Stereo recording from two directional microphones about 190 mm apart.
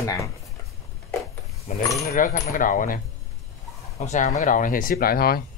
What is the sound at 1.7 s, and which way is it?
Speech, 40° left (ahead or behind).